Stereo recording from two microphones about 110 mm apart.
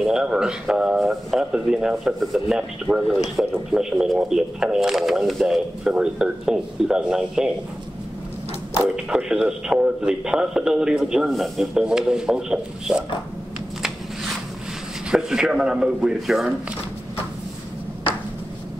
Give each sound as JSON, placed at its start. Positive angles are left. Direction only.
{"t": 0.0, "sound": "speech", "side_deg": -5}
{"t": 2.9, "sound": "speech", "side_deg": -15}
{"t": 3.4, "sound": "speech", "side_deg": -5}
{"t": 8.7, "sound": "speech", "side_deg": -10}
{"t": 13.8, "sound": "a sound", "side_deg": 0}
{"t": 15.0, "sound": "speech", "side_deg": -5}